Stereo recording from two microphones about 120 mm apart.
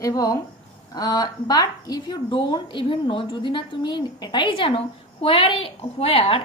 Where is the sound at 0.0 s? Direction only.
30° left (ahead or behind).